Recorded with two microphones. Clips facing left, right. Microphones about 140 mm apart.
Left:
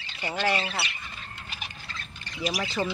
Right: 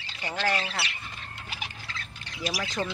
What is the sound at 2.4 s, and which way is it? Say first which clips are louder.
Speech: left 2 dB; 5° left (ahead or behind).